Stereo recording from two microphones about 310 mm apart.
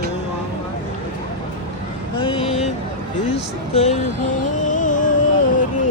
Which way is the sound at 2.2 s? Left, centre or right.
Centre.